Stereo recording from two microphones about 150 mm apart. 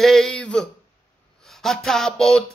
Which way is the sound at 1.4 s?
Centre (ahead or behind).